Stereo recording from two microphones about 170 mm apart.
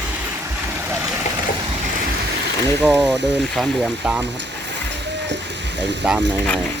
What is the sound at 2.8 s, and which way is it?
Speech, 5° left (ahead or behind).